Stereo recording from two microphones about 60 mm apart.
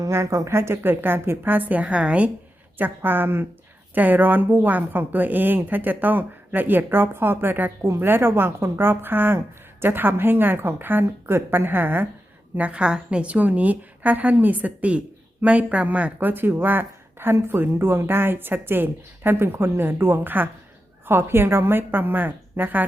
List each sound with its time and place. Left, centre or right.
0.1 s a woman's voice: right
2.7 s speech: right
12.5 s a woman's voice: right
16.3 s speech: right